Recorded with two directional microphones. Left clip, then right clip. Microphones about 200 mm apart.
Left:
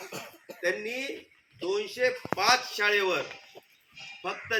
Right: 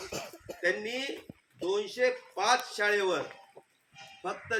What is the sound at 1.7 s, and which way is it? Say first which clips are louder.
Speech: left 1 dB; 15° right (ahead or behind).